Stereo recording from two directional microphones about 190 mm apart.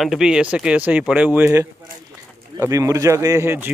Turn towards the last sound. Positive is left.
turn(degrees=-10)  # may be behind; listen again after turning